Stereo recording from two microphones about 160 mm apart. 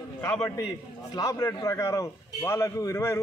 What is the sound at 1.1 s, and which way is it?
A man's voice, 20° left (ahead or behind).